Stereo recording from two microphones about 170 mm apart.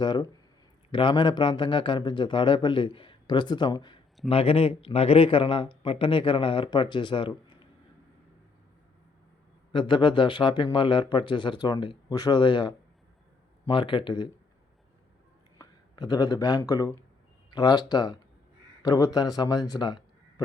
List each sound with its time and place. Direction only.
0.0 s a man's voice: 25° left (ahead or behind)
9.7 s a man's voice: 30° left (ahead or behind)
15.5 s a man's voice: 25° left (ahead or behind)